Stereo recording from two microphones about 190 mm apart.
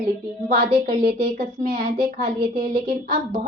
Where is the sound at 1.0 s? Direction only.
45° right (ahead or behind).